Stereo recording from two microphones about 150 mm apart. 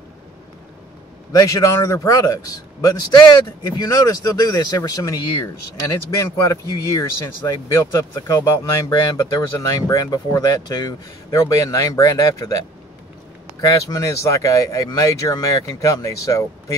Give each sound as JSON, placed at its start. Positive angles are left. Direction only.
{"t": 1.3, "sound": "a man's voice", "side_deg": 20}
{"t": 13.6, "sound": "a man's voice", "side_deg": 20}